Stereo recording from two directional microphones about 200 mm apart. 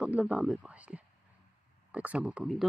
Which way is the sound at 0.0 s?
5° right (ahead or behind).